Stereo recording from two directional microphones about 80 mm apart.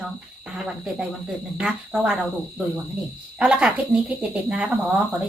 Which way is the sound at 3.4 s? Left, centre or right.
Centre.